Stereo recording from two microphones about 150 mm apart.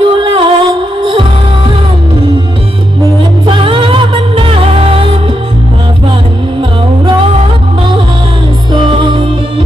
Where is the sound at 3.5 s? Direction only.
35° right (ahead or behind).